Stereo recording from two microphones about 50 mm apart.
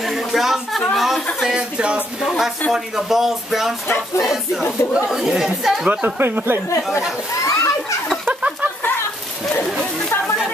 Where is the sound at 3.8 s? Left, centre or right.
Left.